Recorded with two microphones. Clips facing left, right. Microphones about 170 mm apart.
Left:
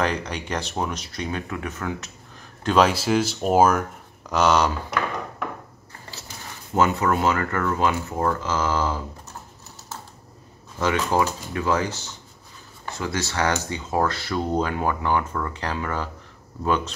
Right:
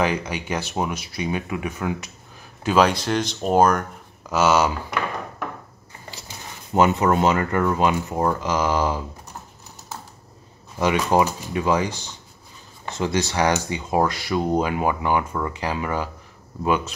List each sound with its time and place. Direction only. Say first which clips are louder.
0.0 s speech: right 2 dB; 5° right (ahead or behind)
2.6 s speech: right 1 dB; centre (ahead or behind)
6.7 s speech: right 3 dB; 20° right (ahead or behind)
10.8 s speech: right 3 dB; 15° right (ahead or behind)